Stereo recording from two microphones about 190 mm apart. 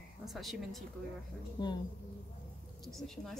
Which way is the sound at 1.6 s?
25° left (ahead or behind).